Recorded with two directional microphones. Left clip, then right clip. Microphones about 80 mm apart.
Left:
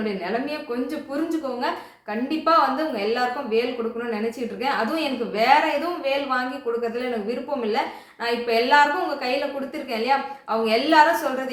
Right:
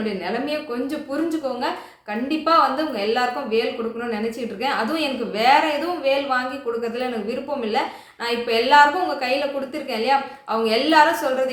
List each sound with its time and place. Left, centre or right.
0.0 s a woman's voice: right
2.4 s a woman's voice: right
4.6 s a woman's voice: right